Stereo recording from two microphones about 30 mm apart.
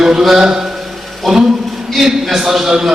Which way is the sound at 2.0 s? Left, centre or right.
Centre.